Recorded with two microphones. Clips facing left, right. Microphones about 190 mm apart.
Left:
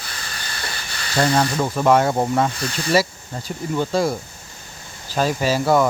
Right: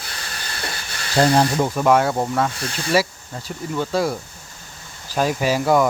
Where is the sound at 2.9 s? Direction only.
10° right (ahead or behind).